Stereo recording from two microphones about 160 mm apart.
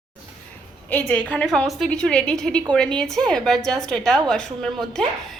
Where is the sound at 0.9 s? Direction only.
5° left (ahead or behind).